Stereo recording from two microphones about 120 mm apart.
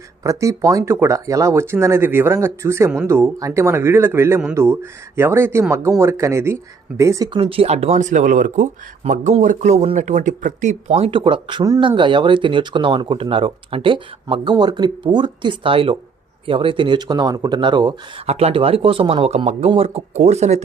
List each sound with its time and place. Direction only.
0.2 s speech: 25° right (ahead or behind)
7.3 s speech: 50° right (ahead or behind); by 10.9 s 90° right
10.9 s speech: 50° right (ahead or behind)
18.3 s speech: 60° right (ahead or behind)